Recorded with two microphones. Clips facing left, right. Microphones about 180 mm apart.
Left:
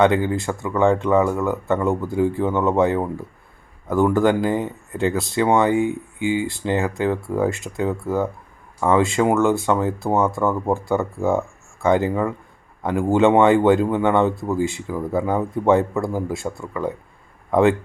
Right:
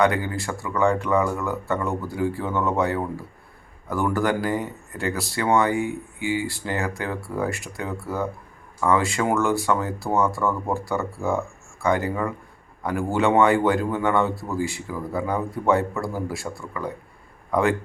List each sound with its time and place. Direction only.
0.0 s speech: 20° left (ahead or behind)